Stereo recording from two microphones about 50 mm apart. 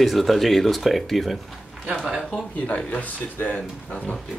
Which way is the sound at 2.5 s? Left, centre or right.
Left.